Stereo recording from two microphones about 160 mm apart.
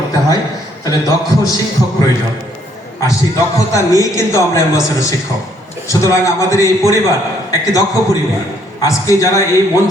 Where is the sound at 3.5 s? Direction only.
20° left (ahead or behind).